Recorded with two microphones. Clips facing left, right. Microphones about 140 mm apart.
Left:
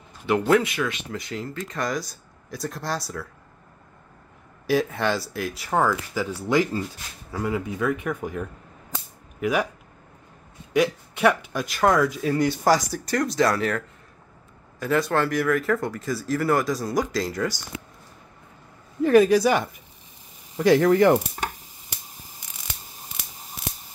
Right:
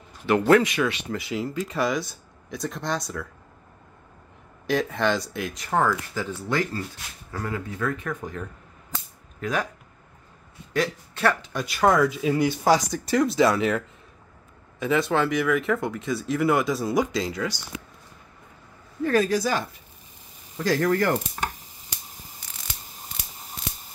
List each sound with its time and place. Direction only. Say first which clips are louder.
0.3 s speech: right 2 dB; 5° left (ahead or behind)
4.6 s speech: left 1 dB; 5° left (ahead or behind)
10.7 s speech: left 4 dB; 15° left (ahead or behind)
11.7 s speech: even; centre (ahead or behind)
19.0 s speech: left 6 dB; 15° left (ahead or behind)
20.8 s chopping: left 3 dB; 20° left (ahead or behind)